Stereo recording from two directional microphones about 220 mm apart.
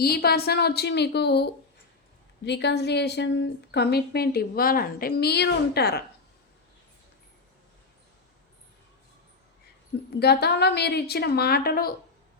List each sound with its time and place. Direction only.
0.0 s a woman's voice: 45° left (ahead or behind)
10.2 s a woman's voice: 45° left (ahead or behind)